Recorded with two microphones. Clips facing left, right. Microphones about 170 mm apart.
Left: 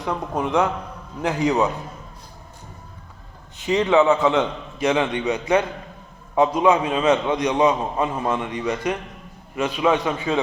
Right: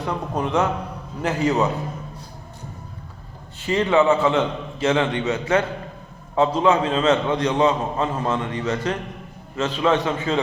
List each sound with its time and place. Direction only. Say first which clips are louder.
0.0 s a man's voice: even; 10° left (ahead or behind)
3.6 s a man's voice: left 1 dB; 15° left (ahead or behind)